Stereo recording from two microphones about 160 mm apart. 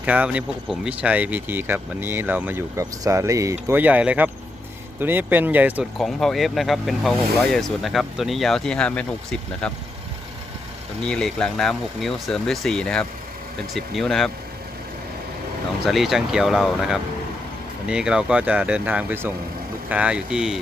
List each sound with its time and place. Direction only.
0.0 s speech: 10° right (ahead or behind)
6.0 s speech: centre (ahead or behind)
11.0 s speech: 5° left (ahead or behind)
15.9 s speech: centre (ahead or behind)